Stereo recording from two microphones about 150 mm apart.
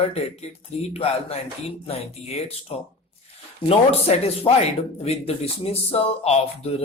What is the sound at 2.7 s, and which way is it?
Speech, 40° left (ahead or behind).